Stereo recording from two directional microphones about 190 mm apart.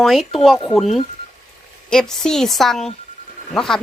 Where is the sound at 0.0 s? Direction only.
Centre (ahead or behind).